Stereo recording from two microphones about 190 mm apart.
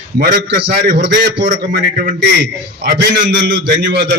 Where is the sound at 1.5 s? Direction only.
45° right (ahead or behind).